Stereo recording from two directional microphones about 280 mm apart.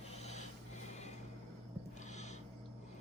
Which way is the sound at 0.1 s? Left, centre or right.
Left.